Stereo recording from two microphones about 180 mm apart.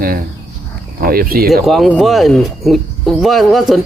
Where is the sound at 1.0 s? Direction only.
55° right (ahead or behind).